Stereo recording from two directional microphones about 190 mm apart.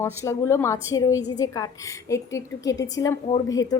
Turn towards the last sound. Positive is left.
turn(degrees=20)  # may be behind; listen again after turning